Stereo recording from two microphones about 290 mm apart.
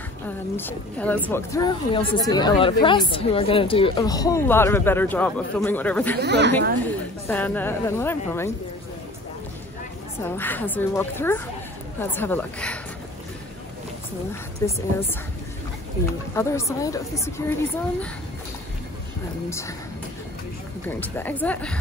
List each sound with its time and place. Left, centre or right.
0.6 s a woman's voice: centre
6.2 s speech: right
6.8 s a woman's voice: centre
10.2 s a woman's voice: centre
14.6 s a woman's voice: centre
16.3 s a woman's voice: centre
20.9 s speech: centre